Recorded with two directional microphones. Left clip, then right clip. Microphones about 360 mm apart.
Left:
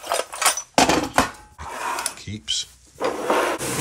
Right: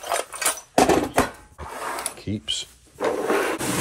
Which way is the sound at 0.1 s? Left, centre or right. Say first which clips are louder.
Left 4 dB; centre.